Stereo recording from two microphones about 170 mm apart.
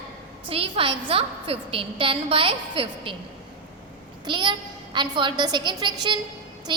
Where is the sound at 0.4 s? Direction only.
35° right (ahead or behind).